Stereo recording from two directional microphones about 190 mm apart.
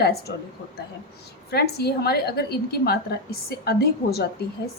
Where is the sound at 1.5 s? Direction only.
55° left (ahead or behind).